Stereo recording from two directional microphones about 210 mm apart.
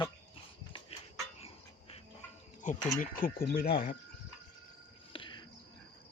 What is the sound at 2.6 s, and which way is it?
Speech, 40° left (ahead or behind).